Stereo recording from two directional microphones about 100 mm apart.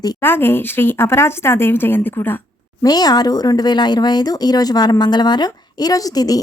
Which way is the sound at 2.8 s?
40° left (ahead or behind).